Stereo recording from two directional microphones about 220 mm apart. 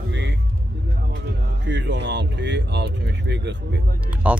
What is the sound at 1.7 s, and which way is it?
Speech, 55° right (ahead or behind).